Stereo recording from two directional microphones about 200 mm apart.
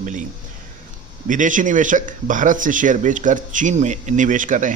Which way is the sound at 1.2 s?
40° right (ahead or behind).